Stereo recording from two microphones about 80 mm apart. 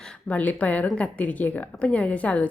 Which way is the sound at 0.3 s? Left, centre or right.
Centre.